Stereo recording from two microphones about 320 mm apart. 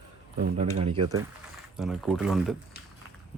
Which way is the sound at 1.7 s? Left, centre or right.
Centre.